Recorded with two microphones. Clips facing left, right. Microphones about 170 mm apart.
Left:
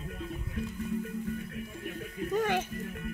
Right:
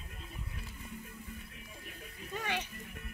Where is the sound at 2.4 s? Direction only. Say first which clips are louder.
Left 9 dB; 45° left (ahead or behind).